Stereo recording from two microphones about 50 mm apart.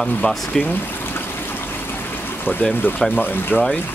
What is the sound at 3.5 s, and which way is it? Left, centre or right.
Speech, left.